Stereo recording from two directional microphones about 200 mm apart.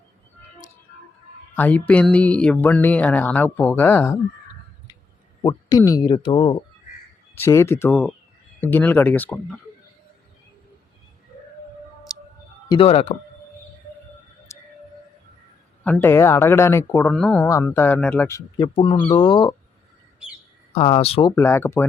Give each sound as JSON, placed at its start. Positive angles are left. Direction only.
{"t": 1.5, "sound": "speech", "side_deg": 10}
{"t": 5.4, "sound": "speech", "side_deg": 20}
{"t": 7.3, "sound": "speech", "side_deg": 15}
{"t": 12.7, "sound": "speech", "side_deg": 30}
{"t": 14.5, "sound": "a sound", "side_deg": 15}
{"t": 15.8, "sound": "speech", "side_deg": 10}
{"t": 20.7, "sound": "speech", "side_deg": 30}